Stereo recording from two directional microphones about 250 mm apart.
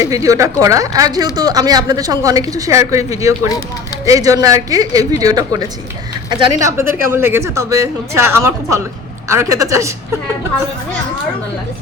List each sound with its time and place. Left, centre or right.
0.0 s speech: centre